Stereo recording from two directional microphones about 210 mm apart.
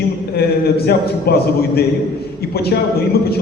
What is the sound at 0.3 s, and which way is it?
A man's voice, 50° left (ahead or behind).